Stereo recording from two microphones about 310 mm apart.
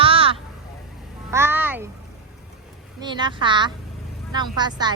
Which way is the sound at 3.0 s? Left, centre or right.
Centre.